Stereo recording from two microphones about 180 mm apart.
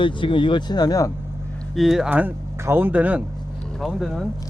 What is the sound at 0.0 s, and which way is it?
Speech, 25° left (ahead or behind).